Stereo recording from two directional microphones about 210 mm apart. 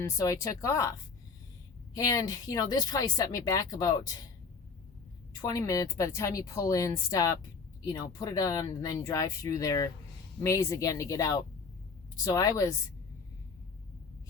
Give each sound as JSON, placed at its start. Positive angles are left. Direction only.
{"t": 0.0, "sound": "speech", "side_deg": 15}
{"t": 2.0, "sound": "speech", "side_deg": 15}
{"t": 5.4, "sound": "speech", "side_deg": 15}